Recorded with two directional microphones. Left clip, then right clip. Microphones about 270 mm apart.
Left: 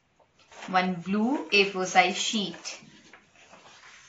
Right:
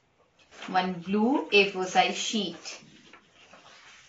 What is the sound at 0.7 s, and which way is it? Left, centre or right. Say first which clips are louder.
Speech: left 1 dB; left.